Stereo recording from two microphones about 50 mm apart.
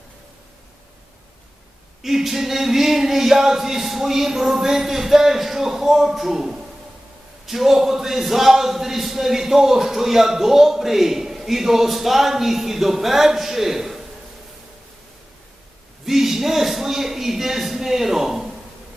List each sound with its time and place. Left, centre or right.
2.0 s speech: centre
16.0 s speech: centre